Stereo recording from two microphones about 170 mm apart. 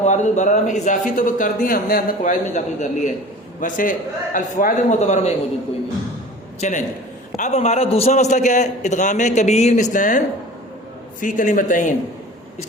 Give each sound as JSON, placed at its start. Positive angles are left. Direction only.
{"t": 0.0, "sound": "speech", "side_deg": 45}
{"t": 6.6, "sound": "speech", "side_deg": 45}